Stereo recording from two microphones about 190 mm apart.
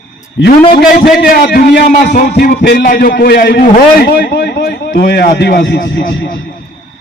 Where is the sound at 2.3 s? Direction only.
55° left (ahead or behind).